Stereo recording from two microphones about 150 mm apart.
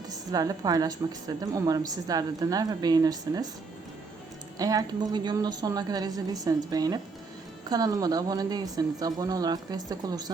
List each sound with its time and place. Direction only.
0.1 s a woman's voice: 25° right (ahead or behind)
4.5 s a woman's voice: 25° right (ahead or behind)